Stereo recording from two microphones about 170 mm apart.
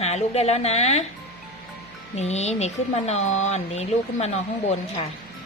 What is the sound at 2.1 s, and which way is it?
Speech, 40° left (ahead or behind).